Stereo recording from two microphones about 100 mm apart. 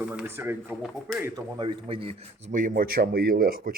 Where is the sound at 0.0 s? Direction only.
15° right (ahead or behind).